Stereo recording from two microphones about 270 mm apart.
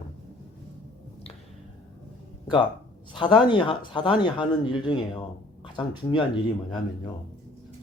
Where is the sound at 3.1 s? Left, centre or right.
Centre.